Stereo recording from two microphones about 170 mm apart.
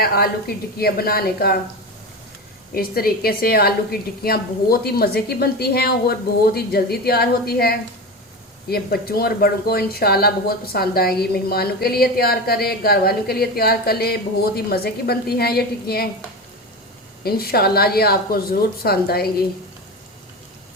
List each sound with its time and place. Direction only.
0.0 s speech: 65° left (ahead or behind)
2.7 s speech: 60° left (ahead or behind)
17.2 s speech: 65° left (ahead or behind)